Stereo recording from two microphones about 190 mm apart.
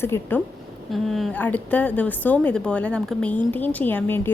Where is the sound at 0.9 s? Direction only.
Centre (ahead or behind).